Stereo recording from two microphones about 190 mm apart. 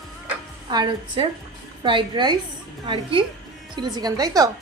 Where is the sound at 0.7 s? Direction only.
25° right (ahead or behind).